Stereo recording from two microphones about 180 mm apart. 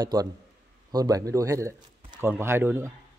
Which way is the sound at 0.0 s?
20° right (ahead or behind).